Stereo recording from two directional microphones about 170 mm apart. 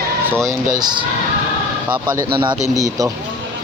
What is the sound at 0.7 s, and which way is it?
Speech, 25° right (ahead or behind).